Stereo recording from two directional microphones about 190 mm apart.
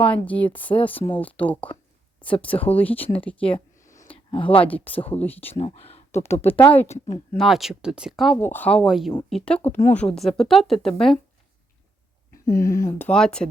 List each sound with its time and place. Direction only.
0.1 s speech: 10° left (ahead or behind)
3.2 s a sound: 5° left (ahead or behind)
4.1 s a sound: 30° left (ahead or behind)
4.6 s speech: 10° left (ahead or behind)
5.5 s speech: 35° left (ahead or behind)
6.4 s speech: 10° left (ahead or behind)
6.8 s speech: 35° left (ahead or behind)
7.3 s a woman's voice: centre (ahead or behind)
8.4 s a woman's voice: 10° left (ahead or behind)
12.5 s speech: 15° left (ahead or behind)